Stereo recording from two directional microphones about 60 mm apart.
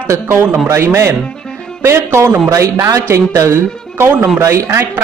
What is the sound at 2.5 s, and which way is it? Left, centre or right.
Speech, right.